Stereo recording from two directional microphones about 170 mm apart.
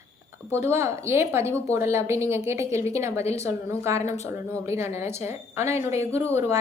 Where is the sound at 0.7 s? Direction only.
15° right (ahead or behind).